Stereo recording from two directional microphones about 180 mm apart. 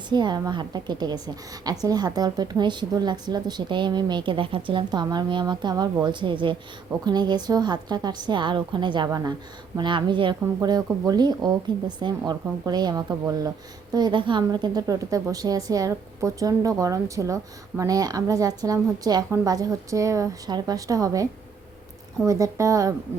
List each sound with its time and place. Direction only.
0.1 s a woman's voice: 25° right (ahead or behind)
22.3 s speech: 15° right (ahead or behind)